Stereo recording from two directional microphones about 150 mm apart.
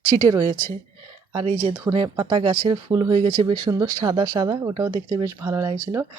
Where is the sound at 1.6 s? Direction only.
30° right (ahead or behind).